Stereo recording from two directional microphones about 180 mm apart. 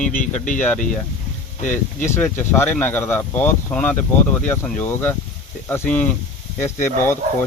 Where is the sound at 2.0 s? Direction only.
10° left (ahead or behind).